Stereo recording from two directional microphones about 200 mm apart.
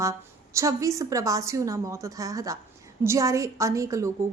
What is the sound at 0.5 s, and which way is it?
A woman's voice, 15° right (ahead or behind).